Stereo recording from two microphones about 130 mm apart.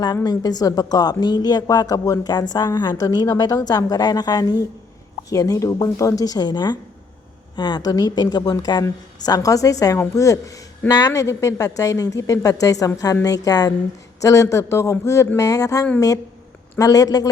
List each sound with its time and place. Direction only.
0.3 s a woman's voice: 30° left (ahead or behind)